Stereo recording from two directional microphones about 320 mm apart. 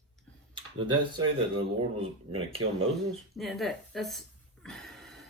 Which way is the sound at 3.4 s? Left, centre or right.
Centre.